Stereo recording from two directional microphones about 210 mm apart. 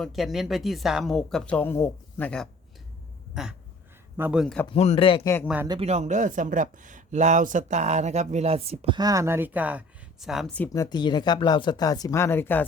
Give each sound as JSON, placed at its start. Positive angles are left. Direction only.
{"t": 0.0, "sound": "speech", "side_deg": 0}
{"t": 4.2, "sound": "speech", "side_deg": -5}
{"t": 4.7, "sound": "speech", "side_deg": 30}
{"t": 5.6, "sound": "speech", "side_deg": -25}